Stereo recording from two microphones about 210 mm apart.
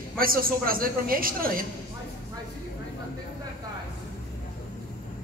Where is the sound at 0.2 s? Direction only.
45° right (ahead or behind).